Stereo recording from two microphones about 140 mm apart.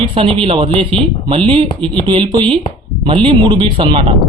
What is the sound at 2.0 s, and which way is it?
Speech, 35° right (ahead or behind).